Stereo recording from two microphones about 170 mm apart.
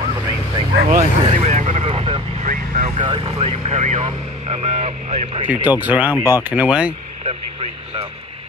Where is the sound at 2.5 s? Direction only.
50° right (ahead or behind).